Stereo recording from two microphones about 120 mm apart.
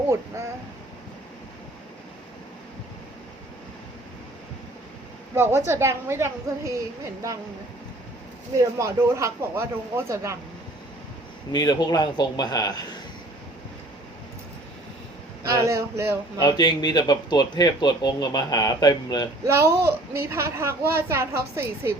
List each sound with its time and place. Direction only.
5.3 s a woman's voice: 20° right (ahead or behind)
8.8 s a woman's voice: 25° right (ahead or behind)
11.5 s speech: 35° left (ahead or behind)
15.4 s a woman's voice: 25° right (ahead or behind)
16.4 s speech: 35° left (ahead or behind)
19.5 s a woman's voice: 20° right (ahead or behind)